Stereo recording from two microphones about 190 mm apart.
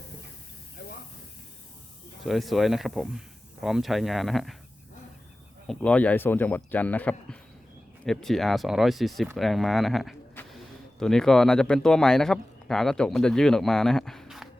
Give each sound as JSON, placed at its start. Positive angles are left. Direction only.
{"t": 0.8, "sound": "hiss", "side_deg": 45}
{"t": 2.2, "sound": "speech", "side_deg": 0}
{"t": 5.6, "sound": "speech", "side_deg": 5}
{"t": 10.4, "sound": "a sound", "side_deg": 10}
{"t": 11.0, "sound": "speech", "side_deg": 0}